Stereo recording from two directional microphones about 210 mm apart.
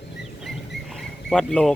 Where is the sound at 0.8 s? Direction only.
Centre (ahead or behind).